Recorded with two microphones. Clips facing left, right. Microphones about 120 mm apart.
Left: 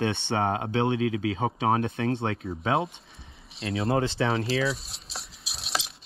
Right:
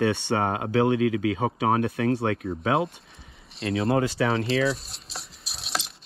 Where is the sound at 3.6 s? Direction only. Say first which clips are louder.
Right 3 dB; centre (ahead or behind).